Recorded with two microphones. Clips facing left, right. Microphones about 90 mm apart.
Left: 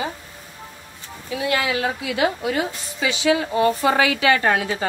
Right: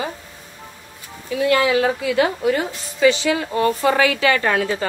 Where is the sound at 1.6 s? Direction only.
35° right (ahead or behind).